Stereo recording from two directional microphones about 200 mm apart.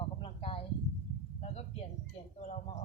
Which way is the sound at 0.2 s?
25° left (ahead or behind).